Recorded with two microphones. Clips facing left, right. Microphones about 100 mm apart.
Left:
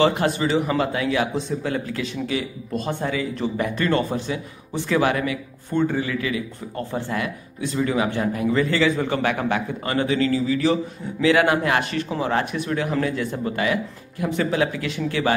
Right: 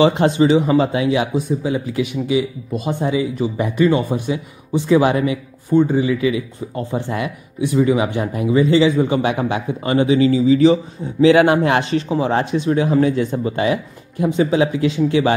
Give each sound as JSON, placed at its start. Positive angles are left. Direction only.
{"t": 0.0, "sound": "a man's voice", "side_deg": -20}